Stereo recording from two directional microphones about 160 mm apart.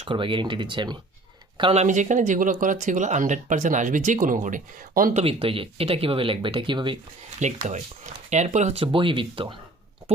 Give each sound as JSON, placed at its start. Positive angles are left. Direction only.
{"t": 0.0, "sound": "speech", "side_deg": -30}
{"t": 1.8, "sound": "speech", "side_deg": -50}
{"t": 5.2, "sound": "speech", "side_deg": -35}
{"t": 7.3, "sound": "speech", "side_deg": -45}
{"t": 8.8, "sound": "speech", "side_deg": -35}